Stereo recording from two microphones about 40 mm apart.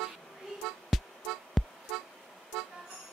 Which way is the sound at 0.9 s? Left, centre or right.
Centre.